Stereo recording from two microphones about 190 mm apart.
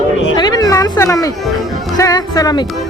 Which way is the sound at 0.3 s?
20° left (ahead or behind).